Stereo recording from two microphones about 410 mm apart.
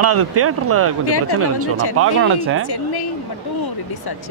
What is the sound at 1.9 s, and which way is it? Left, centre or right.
Speech, right.